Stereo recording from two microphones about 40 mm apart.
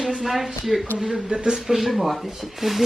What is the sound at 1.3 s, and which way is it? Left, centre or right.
Speech, centre.